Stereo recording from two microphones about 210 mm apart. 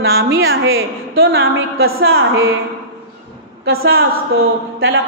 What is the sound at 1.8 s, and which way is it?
Speech, 50° right (ahead or behind).